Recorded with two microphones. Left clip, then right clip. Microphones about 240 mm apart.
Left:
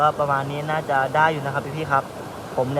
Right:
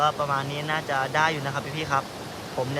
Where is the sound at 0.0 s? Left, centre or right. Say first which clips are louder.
Left 4 dB; centre.